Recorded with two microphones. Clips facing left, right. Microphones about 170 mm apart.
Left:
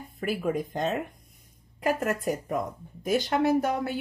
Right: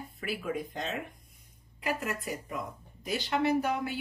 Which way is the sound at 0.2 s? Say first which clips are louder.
Left 6 dB; 45° left (ahead or behind).